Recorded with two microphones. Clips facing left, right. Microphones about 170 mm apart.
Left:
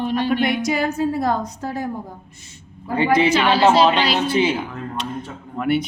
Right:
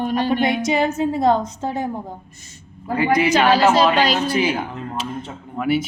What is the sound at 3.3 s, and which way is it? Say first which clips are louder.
Speech: right 2 dB; 45° right (ahead or behind).